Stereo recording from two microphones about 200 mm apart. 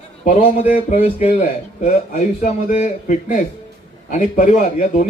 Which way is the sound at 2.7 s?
40° left (ahead or behind).